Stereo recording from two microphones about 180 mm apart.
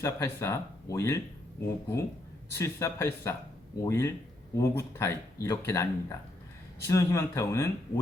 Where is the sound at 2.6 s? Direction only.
15° left (ahead or behind).